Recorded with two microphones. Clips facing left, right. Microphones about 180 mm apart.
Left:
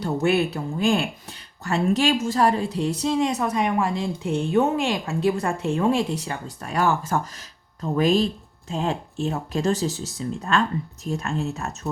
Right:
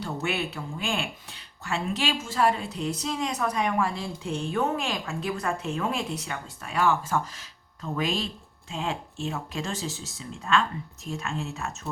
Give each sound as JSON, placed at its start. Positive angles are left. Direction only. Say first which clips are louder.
{"t": 0.0, "sound": "a woman's voice", "louder": "left 9 dB", "side_deg": 40}